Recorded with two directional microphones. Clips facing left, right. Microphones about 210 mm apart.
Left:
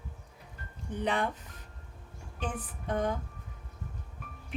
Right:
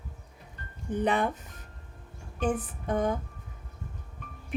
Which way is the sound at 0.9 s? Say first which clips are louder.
Right 4 dB; 50° right (ahead or behind).